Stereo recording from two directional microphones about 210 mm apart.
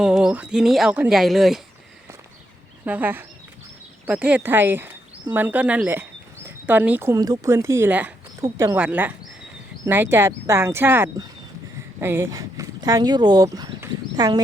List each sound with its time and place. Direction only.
0.0 s speech: 5° right (ahead or behind)
2.8 s speech: 10° right (ahead or behind)